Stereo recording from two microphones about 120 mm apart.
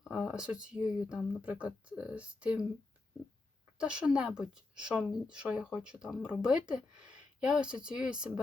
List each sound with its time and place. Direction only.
0.0 s a woman's voice: 5° right (ahead or behind)
3.8 s a woman's voice: 10° right (ahead or behind)